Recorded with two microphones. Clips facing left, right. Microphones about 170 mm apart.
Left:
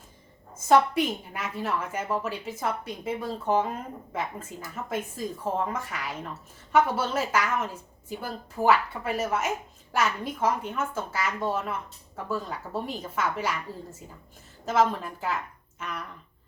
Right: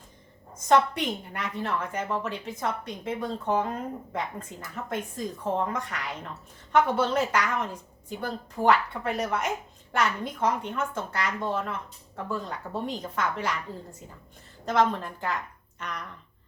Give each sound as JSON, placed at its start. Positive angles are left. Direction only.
{"t": 0.7, "sound": "a woman's voice", "side_deg": 5}
{"t": 13.7, "sound": "a woman's voice", "side_deg": -20}
{"t": 14.6, "sound": "a woman's voice", "side_deg": 5}